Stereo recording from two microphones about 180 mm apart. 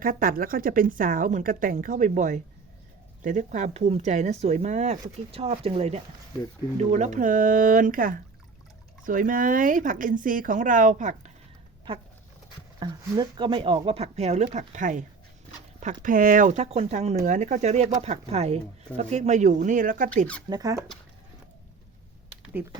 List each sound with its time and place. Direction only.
0.0 s speech: 50° right (ahead or behind)
12.8 s speech: 25° right (ahead or behind); by 20.1 s 50° right (ahead or behind)
20.5 s speech: 20° right (ahead or behind)